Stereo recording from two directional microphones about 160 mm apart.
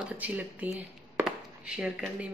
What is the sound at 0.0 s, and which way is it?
Speech, 10° right (ahead or behind).